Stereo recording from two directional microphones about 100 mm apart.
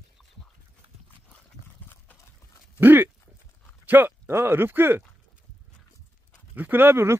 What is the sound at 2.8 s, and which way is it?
Speech, 20° right (ahead or behind).